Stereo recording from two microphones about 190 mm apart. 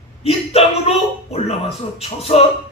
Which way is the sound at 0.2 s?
30° left (ahead or behind).